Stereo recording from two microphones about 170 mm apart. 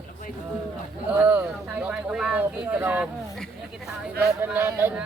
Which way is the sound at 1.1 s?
10° right (ahead or behind).